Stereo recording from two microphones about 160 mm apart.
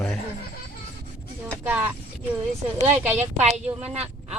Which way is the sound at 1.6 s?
10° right (ahead or behind).